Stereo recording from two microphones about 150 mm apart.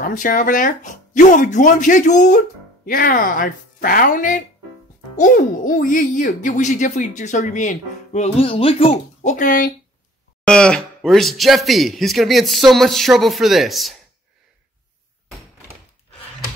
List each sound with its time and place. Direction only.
0.0 s speech: 60° left (ahead or behind)
10.4 s speech: 5° left (ahead or behind)